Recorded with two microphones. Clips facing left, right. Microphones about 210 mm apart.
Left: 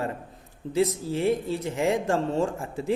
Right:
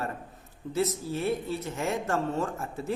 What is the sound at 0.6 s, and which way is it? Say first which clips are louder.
Speech: left 4 dB; 25° left (ahead or behind).